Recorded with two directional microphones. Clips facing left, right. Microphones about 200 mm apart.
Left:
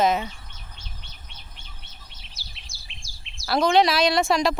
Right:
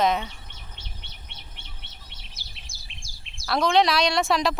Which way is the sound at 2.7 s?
55° right (ahead or behind).